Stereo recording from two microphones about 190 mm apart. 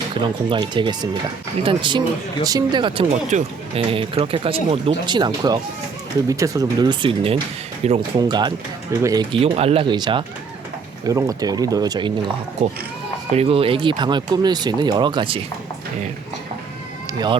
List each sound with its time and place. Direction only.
0.1 s speech: 25° right (ahead or behind)
3.3 s speech: 40° right (ahead or behind)
3.8 s speech: 30° right (ahead or behind)
7.8 s speech: 35° right (ahead or behind)
8.2 s speech: 20° right (ahead or behind)
13.3 s speech: 30° right (ahead or behind)